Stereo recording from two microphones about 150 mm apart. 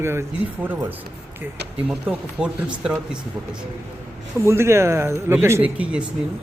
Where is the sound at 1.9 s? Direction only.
10° right (ahead or behind).